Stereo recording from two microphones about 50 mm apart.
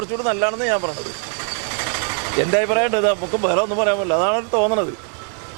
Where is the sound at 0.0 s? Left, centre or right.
Right.